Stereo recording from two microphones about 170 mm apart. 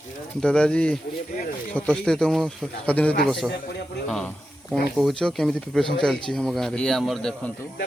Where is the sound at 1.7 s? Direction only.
5° left (ahead or behind).